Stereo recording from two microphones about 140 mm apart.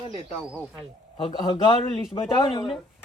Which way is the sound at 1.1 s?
30° left (ahead or behind).